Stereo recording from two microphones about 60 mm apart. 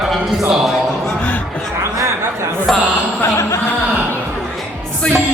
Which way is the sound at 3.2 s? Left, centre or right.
Left.